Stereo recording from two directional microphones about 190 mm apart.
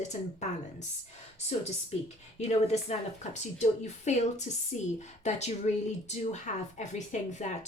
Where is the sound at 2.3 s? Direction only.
35° left (ahead or behind).